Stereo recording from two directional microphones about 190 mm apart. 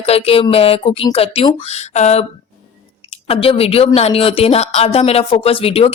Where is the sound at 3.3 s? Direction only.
30° left (ahead or behind).